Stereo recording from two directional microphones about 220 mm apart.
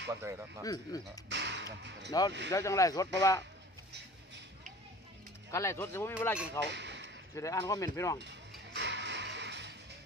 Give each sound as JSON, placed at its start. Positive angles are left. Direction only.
{"t": 0.1, "sound": "speech", "side_deg": -10}
{"t": 0.6, "sound": "speech", "side_deg": 15}
{"t": 1.3, "sound": "whip", "side_deg": -50}
{"t": 2.0, "sound": "speech", "side_deg": 15}
{"t": 5.5, "sound": "speech", "side_deg": 15}
{"t": 6.7, "sound": "a sound", "side_deg": -55}
{"t": 7.3, "sound": "speech", "side_deg": 15}
{"t": 8.2, "sound": "music", "side_deg": -55}